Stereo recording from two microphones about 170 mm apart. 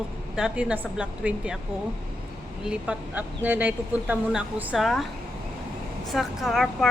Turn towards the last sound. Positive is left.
turn(degrees=0)  # may be behind; listen again after turning